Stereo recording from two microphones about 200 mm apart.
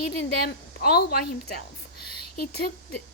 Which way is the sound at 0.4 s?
50° left (ahead or behind).